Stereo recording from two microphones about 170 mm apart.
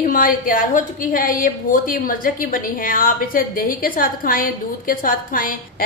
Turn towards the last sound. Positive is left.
turn(degrees=55)  # may be behind; listen again after turning